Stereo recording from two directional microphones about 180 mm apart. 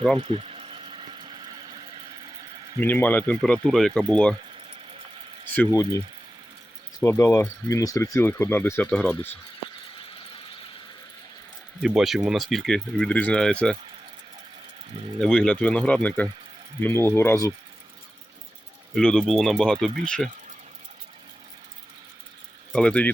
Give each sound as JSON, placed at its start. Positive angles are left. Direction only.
{"t": 0.2, "sound": "a sound", "side_deg": -30}
{"t": 2.8, "sound": "speech", "side_deg": 10}
{"t": 5.5, "sound": "speech", "side_deg": 15}
{"t": 7.0, "sound": "speech", "side_deg": 15}
{"t": 11.8, "sound": "speech", "side_deg": 0}
{"t": 15.2, "sound": "speech", "side_deg": 5}
{"t": 18.9, "sound": "speech", "side_deg": 5}
{"t": 22.7, "sound": "speech", "side_deg": 5}